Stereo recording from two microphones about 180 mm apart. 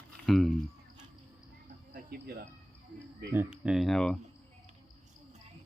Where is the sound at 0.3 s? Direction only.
Centre (ahead or behind).